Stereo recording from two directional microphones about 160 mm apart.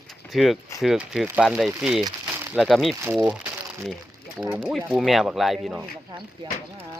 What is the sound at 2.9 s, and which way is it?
Speech, 15° right (ahead or behind).